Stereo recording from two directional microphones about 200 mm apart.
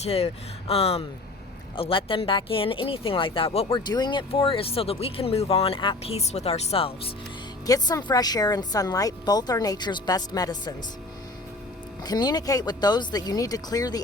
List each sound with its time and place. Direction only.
0.0 s speech: 30° left (ahead or behind)
7.7 s speech: 20° left (ahead or behind)
12.0 s speech: 20° left (ahead or behind)